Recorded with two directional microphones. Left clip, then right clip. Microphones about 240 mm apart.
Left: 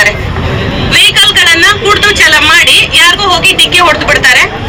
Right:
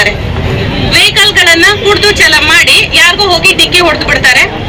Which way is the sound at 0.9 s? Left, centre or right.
Left.